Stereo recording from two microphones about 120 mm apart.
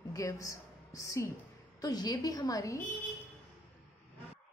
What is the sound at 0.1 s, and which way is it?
A woman's voice, 30° left (ahead or behind).